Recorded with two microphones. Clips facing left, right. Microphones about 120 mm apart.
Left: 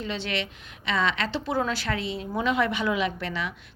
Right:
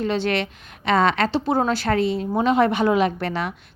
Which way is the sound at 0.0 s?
50° right (ahead or behind).